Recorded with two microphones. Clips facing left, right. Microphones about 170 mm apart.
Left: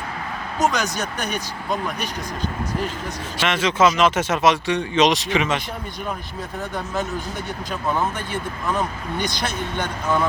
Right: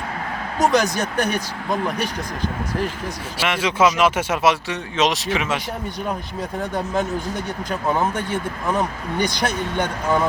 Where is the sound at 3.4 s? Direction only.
10° right (ahead or behind).